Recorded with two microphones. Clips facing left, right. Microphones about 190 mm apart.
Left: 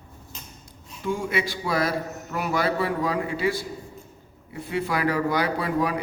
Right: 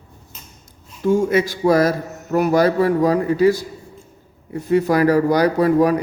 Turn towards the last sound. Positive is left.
turn(degrees=-40)  # may be behind; listen again after turning